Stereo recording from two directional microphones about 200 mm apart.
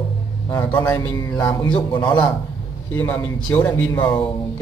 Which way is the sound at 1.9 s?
25° left (ahead or behind).